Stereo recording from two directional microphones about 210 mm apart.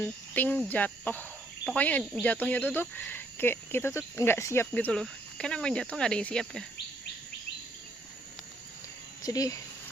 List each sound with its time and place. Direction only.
0.0 s speech: 10° left (ahead or behind)
9.2 s speech: 15° left (ahead or behind)